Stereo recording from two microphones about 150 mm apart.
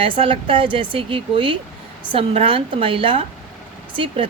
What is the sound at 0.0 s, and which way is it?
Speech, 35° right (ahead or behind).